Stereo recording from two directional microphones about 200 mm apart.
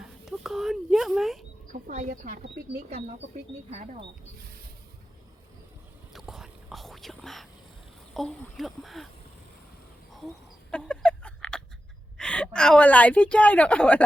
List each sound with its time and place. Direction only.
0.0 s a sound: centre (ahead or behind)
1.7 s speech: 40° right (ahead or behind)
6.1 s whispering: centre (ahead or behind)
8.1 s speech: centre (ahead or behind)
10.2 s a sound: 5° left (ahead or behind)
12.1 s a woman's voice: 5° left (ahead or behind)